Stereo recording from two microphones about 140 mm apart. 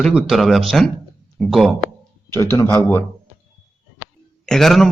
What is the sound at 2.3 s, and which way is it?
Speech, 20° left (ahead or behind).